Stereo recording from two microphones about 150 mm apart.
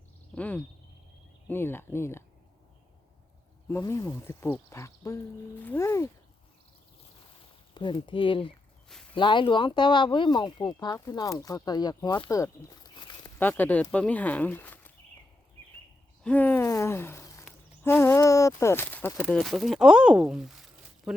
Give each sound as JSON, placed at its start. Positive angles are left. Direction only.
{"t": 0.3, "sound": "speech", "side_deg": 10}
{"t": 3.7, "sound": "speech", "side_deg": 20}
{"t": 7.7, "sound": "speech", "side_deg": 30}
{"t": 13.4, "sound": "speech", "side_deg": 10}
{"t": 16.2, "sound": "a sound", "side_deg": 10}
{"t": 19.2, "sound": "speech", "side_deg": 5}